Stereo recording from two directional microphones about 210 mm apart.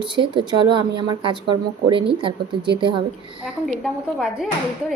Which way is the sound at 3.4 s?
Centre (ahead or behind).